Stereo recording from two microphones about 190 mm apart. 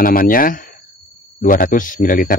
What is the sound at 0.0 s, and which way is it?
Speech, 50° left (ahead or behind).